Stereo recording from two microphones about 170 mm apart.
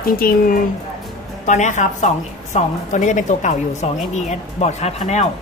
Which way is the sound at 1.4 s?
45° left (ahead or behind).